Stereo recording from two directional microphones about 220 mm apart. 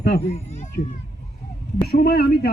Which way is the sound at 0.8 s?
35° left (ahead or behind).